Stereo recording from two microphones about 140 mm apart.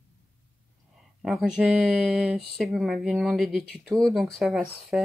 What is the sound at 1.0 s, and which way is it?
Speech, centre (ahead or behind).